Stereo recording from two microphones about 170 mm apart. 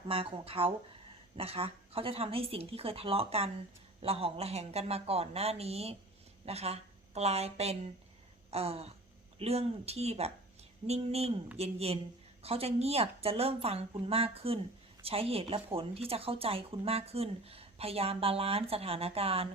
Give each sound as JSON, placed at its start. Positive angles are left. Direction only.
{"t": 0.1, "sound": "a woman's voice", "side_deg": -35}